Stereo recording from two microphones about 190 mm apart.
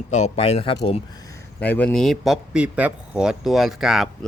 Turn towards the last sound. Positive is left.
turn(degrees=0)  # may be behind; listen again after turning